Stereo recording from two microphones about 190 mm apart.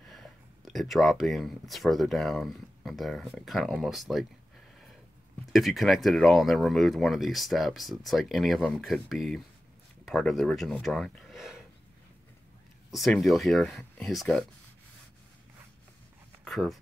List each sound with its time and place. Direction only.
0.0 s speech: centre (ahead or behind)
5.5 s speech: centre (ahead or behind)
12.9 s speech: centre (ahead or behind)
16.4 s speech: centre (ahead or behind)